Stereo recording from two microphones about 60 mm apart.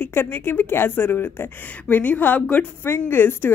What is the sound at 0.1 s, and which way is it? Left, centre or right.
Speech, left.